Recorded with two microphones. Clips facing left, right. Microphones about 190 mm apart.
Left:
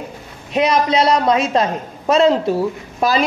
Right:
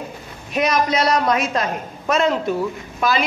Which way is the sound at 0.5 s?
30° left (ahead or behind).